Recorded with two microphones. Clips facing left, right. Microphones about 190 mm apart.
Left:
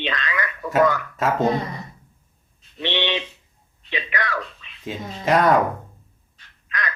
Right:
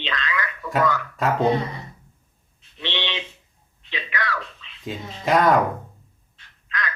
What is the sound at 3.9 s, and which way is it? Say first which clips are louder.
Speech: left 2 dB; 50° left (ahead or behind).